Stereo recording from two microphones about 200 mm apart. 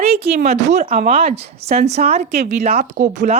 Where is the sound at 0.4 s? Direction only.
35° right (ahead or behind).